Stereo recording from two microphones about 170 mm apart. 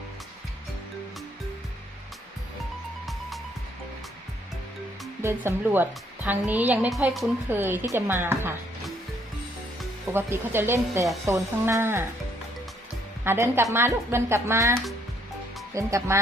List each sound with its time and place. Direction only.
3.1 s music: centre (ahead or behind)
5.2 s a woman's voice: 10° right (ahead or behind)
7.5 s a woman's voice: 10° right (ahead or behind)
10.1 s a woman's voice: 15° right (ahead or behind)
13.2 s a woman's voice: 15° right (ahead or behind)